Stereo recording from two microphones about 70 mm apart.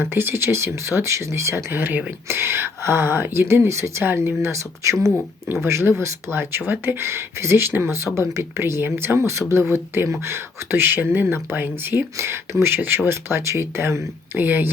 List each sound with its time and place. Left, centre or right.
0.0 s speech: right
4.0 s speech: right